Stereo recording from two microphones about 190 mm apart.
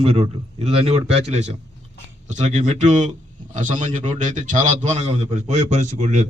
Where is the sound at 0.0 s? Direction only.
30° right (ahead or behind).